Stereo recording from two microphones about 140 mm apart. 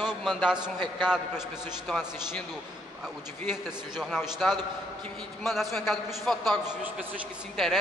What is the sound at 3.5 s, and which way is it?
Speech, 5° right (ahead or behind).